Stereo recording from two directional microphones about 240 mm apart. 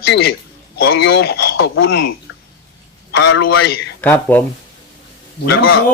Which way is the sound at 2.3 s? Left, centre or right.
Left.